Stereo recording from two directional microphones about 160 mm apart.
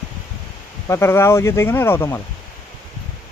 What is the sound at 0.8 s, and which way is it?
Speech, 15° left (ahead or behind).